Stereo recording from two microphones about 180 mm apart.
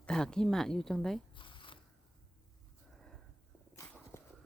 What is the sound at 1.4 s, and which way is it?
Zipper, 25° left (ahead or behind).